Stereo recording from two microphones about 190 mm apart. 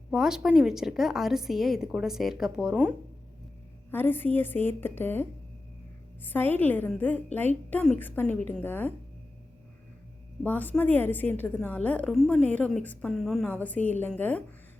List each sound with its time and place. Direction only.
0.1 s a woman's voice: 5° right (ahead or behind)
3.9 s a woman's voice: 10° left (ahead or behind)
10.4 s a woman's voice: 10° left (ahead or behind)